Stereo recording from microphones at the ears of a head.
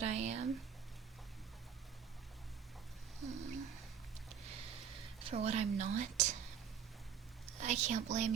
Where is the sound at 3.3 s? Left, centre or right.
Right.